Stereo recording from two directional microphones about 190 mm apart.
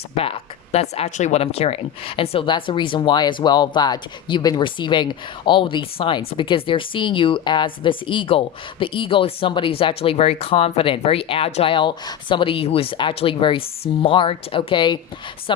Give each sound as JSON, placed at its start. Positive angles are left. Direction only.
{"t": 0.2, "sound": "a woman's voice", "side_deg": 30}